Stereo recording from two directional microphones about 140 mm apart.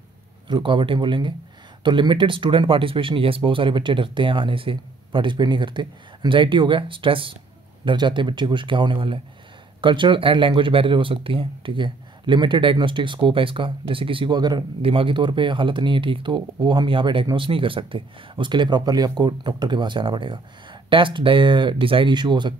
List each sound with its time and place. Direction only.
0.5 s speech: 35° right (ahead or behind)